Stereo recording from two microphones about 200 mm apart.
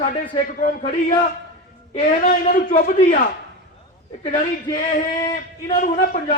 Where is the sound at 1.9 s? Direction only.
40° left (ahead or behind).